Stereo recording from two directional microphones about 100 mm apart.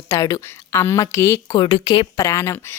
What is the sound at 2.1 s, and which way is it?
Speech, 35° left (ahead or behind).